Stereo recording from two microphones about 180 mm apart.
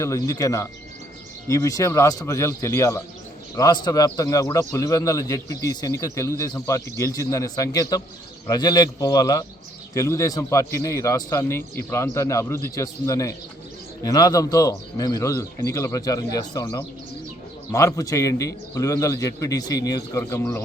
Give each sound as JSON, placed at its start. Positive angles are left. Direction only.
{"t": 0.0, "sound": "a man's voice", "side_deg": 20}